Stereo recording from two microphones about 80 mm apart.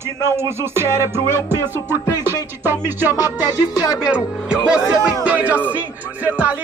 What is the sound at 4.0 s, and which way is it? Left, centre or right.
Speech, centre.